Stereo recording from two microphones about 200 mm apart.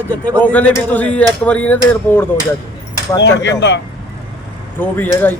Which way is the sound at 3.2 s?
60° left (ahead or behind).